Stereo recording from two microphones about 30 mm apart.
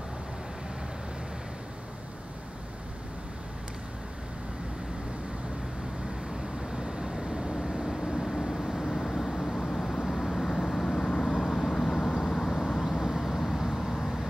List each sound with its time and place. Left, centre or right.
6.7 s vehicle: right; by 8.8 s centre
8.8 s vehicle: centre
11.3 s vehicle: centre
13.0 s vehicle: centre